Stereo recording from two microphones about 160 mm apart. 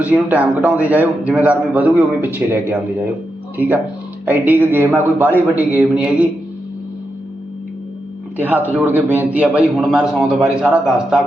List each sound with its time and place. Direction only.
0.0 s a man's voice: 10° right (ahead or behind)
4.3 s a man's voice: 10° right (ahead or behind)
8.4 s a man's voice: 10° right (ahead or behind)